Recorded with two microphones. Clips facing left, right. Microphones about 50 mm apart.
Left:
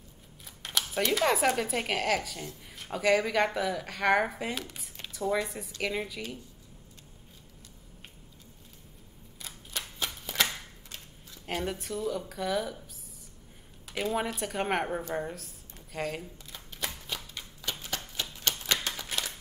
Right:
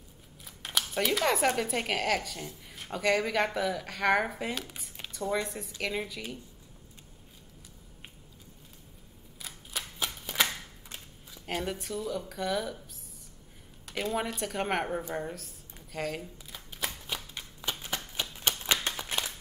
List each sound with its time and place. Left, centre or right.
0.6 s a sound: centre
1.6 s a woman's voice: centre
9.4 s typewriter: centre
11.4 s a woman's voice: centre
13.8 s a woman's voice: centre
17.6 s a sound: centre